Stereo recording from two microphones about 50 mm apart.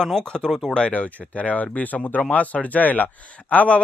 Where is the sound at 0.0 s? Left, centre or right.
Centre.